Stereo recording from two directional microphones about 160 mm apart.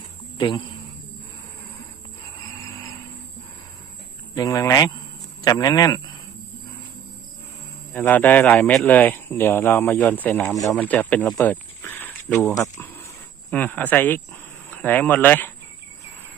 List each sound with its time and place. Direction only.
0.3 s speech: 30° left (ahead or behind)
2.6 s music: 20° left (ahead or behind)
4.4 s speech: 20° left (ahead or behind)
7.9 s speech: 10° left (ahead or behind)